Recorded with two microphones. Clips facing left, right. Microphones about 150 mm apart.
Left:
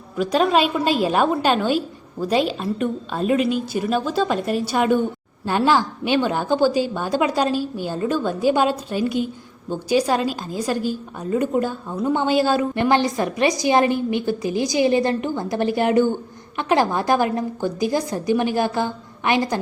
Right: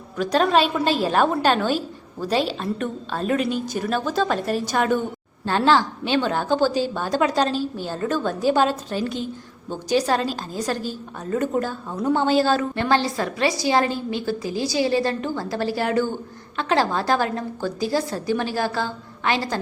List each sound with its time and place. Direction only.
0.2 s a woman's voice: 10° left (ahead or behind)